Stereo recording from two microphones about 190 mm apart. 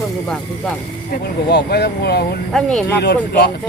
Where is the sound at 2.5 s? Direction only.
5° left (ahead or behind).